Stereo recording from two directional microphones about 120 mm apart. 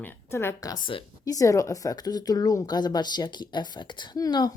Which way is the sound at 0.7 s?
45° left (ahead or behind).